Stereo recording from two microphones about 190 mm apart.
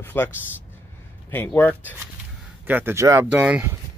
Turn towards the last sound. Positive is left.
turn(degrees=-10)  # may be behind; listen again after turning